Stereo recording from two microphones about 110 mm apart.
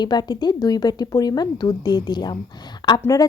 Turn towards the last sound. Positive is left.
turn(degrees=30)  # may be behind; listen again after turning